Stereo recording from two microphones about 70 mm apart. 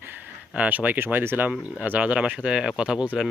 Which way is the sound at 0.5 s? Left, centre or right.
Right.